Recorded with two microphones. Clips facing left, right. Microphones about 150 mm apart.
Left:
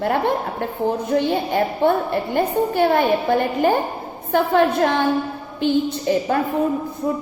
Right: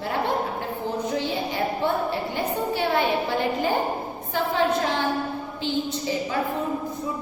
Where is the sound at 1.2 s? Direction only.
55° left (ahead or behind).